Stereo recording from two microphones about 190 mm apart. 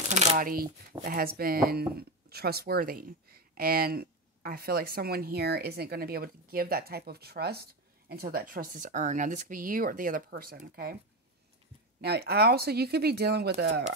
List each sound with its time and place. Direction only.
0.1 s speech: 35° right (ahead or behind); by 11.0 s 55° right (ahead or behind)
12.0 s speech: 60° right (ahead or behind)